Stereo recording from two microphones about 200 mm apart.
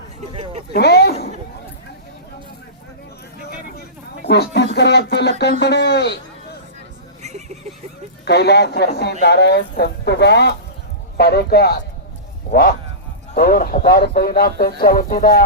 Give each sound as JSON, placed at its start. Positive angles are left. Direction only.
{"t": 0.3, "sound": "a sound", "side_deg": -30}
{"t": 0.7, "sound": "speech", "side_deg": 55}
{"t": 3.8, "sound": "speech", "side_deg": 55}
{"t": 7.2, "sound": "vehicle", "side_deg": -35}
{"t": 8.2, "sound": "speech", "side_deg": 55}